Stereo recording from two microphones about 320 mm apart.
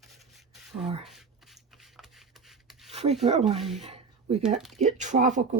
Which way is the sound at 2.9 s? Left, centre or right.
Centre.